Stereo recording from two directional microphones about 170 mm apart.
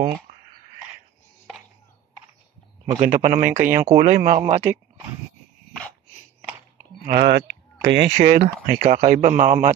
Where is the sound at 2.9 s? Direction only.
45° right (ahead or behind).